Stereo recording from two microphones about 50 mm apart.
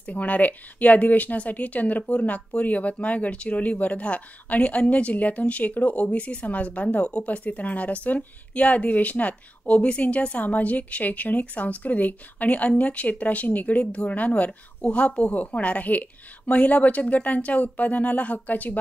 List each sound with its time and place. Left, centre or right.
0.0 s a woman's voice: left